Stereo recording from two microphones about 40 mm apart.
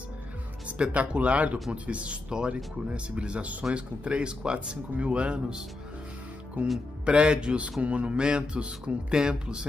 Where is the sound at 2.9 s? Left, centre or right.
Right.